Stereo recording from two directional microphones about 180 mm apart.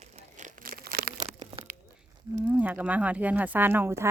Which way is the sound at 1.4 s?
30° right (ahead or behind).